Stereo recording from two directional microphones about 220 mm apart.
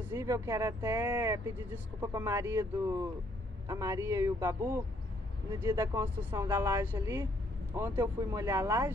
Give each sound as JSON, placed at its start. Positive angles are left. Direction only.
{"t": 0.1, "sound": "speech", "side_deg": -15}